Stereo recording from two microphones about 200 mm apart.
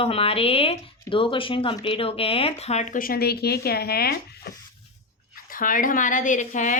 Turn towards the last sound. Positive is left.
turn(degrees=40)  # may be behind; listen again after turning